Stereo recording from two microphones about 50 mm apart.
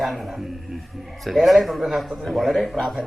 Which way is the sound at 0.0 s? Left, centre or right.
Centre.